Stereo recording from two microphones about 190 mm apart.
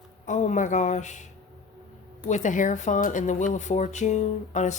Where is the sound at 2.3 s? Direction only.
40° left (ahead or behind).